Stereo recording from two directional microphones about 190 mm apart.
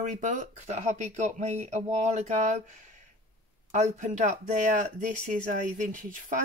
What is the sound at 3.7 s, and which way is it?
Speech, 40° right (ahead or behind).